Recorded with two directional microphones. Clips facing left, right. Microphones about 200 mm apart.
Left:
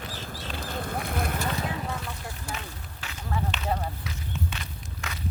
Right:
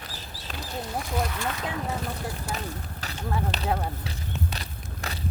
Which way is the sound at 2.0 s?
40° right (ahead or behind).